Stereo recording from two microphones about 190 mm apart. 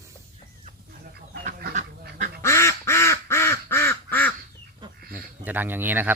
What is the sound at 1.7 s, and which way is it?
Duck, 40° right (ahead or behind).